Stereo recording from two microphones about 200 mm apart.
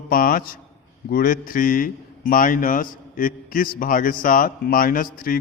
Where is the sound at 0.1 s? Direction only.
45° left (ahead or behind).